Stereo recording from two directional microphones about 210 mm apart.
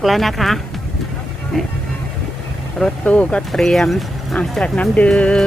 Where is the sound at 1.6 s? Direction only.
Centre (ahead or behind).